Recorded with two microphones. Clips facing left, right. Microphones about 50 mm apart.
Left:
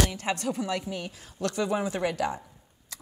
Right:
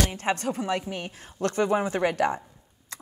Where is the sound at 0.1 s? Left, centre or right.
Right.